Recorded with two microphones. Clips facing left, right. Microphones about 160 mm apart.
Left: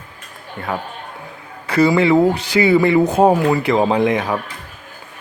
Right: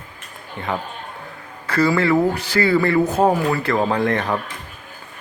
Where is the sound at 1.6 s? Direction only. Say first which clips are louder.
Left 4 dB; 15° left (ahead or behind).